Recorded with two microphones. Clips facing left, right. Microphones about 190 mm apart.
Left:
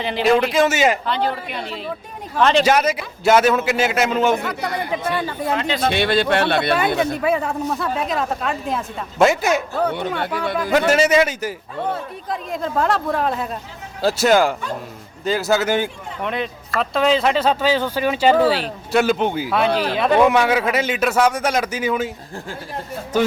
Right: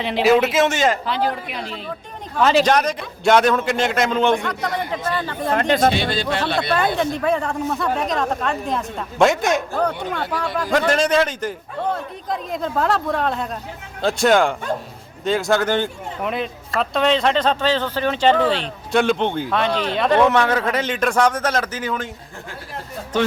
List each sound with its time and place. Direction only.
0.0 s speech: centre (ahead or behind)
5.5 s speech: 50° right (ahead or behind)
5.9 s speech: 60° left (ahead or behind)
6.9 s speech: 5° left (ahead or behind)